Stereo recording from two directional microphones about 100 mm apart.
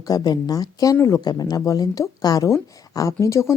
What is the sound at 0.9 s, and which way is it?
Speech, 25° left (ahead or behind).